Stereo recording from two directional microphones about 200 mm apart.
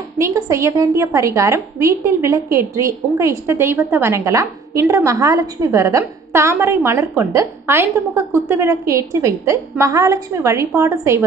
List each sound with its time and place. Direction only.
0.2 s a woman's voice: 15° right (ahead or behind)